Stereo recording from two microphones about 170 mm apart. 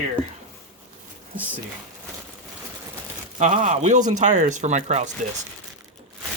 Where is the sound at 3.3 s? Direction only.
45° right (ahead or behind).